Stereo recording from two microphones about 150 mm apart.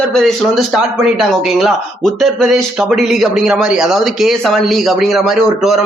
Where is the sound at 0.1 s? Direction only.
Centre (ahead or behind).